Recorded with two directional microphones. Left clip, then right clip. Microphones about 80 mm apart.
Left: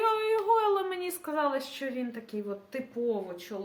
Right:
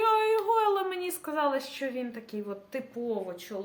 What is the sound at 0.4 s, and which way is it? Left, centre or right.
A woman's voice, right.